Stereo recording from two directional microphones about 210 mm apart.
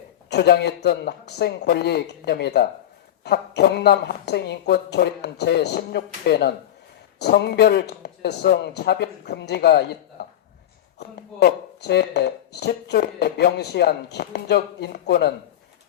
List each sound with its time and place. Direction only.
0.3 s speech: 50° left (ahead or behind)
11.3 s speech: 50° left (ahead or behind)